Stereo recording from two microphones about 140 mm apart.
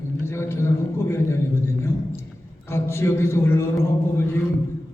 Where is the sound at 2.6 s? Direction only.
20° left (ahead or behind).